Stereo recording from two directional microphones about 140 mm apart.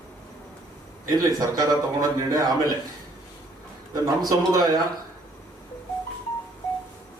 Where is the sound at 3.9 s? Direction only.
25° right (ahead or behind).